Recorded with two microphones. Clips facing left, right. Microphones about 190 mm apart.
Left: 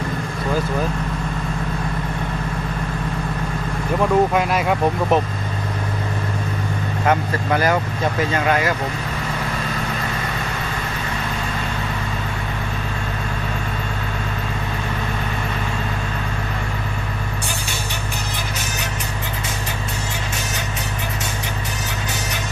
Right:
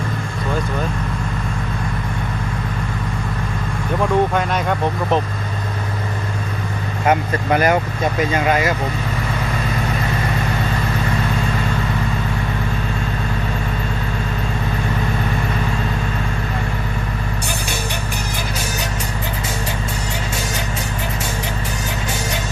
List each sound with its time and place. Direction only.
4.0 s speech: 5° left (ahead or behind)
7.1 s speech: 15° right (ahead or behind)